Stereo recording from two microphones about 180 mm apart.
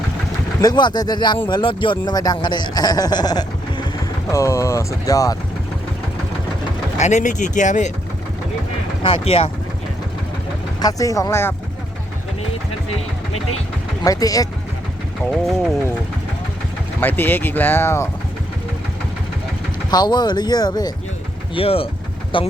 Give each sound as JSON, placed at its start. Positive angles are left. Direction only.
{"t": 0.6, "sound": "speech", "side_deg": 25}
{"t": 7.0, "sound": "speech", "side_deg": 45}
{"t": 9.0, "sound": "speech", "side_deg": 30}
{"t": 10.8, "sound": "speech", "side_deg": 20}
{"t": 14.0, "sound": "speech", "side_deg": 20}
{"t": 17.0, "sound": "speech", "side_deg": 10}
{"t": 19.9, "sound": "speech", "side_deg": 25}